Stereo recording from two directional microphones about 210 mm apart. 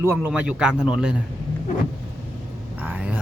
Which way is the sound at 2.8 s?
5° right (ahead or behind).